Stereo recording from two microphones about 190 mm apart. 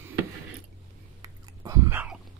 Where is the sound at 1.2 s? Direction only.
15° right (ahead or behind).